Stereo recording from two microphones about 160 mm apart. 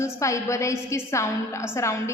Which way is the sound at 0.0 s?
20° left (ahead or behind).